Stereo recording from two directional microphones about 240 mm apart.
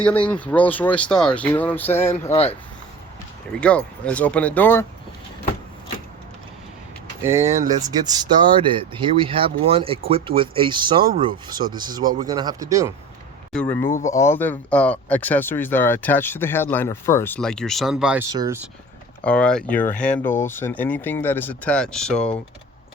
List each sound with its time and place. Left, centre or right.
0.0 s speech: centre
3.6 s speech: centre
7.2 s speech: centre
13.5 s speech: centre
19.2 s speech: centre